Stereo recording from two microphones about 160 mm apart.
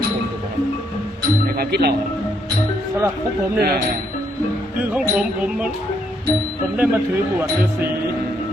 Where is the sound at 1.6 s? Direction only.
80° right.